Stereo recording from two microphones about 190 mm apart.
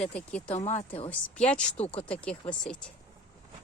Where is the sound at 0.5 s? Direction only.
35° left (ahead or behind).